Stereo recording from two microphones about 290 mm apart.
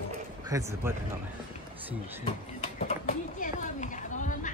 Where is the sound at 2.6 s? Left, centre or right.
Left.